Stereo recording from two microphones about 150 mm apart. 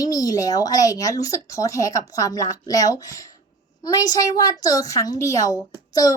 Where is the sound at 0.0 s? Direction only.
25° left (ahead or behind).